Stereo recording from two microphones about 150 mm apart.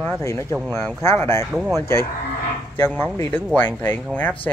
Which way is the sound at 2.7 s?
15° left (ahead or behind).